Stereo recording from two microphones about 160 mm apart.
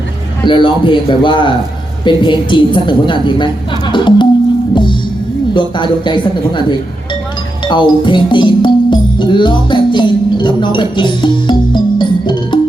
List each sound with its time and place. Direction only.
0.4 s a man's voice: 30° left (ahead or behind)
5.5 s a woman's voice: 30° left (ahead or behind)
7.6 s music: 30° left (ahead or behind)